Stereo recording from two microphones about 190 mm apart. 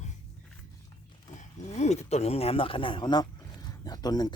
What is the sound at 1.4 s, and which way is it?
Speech, 35° left (ahead or behind).